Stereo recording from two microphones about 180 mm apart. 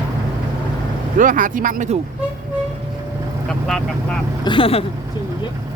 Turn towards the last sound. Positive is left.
turn(degrees=30)  # may be behind; listen again after turning